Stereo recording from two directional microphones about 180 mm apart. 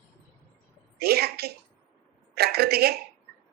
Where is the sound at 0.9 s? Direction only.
60° right (ahead or behind).